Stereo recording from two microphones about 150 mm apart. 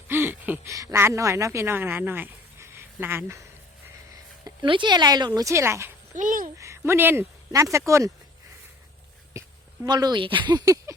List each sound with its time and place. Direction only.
0.1 s a woman's voice: 15° right (ahead or behind)
4.4 s speech: 30° right (ahead or behind)
6.1 s a child's voice: 65° right (ahead or behind)
6.6 s speech: 20° right (ahead or behind)
9.8 s speech: 25° right (ahead or behind)